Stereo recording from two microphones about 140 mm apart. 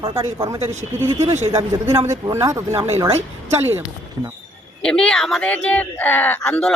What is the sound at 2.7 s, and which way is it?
Speech, 45° right (ahead or behind).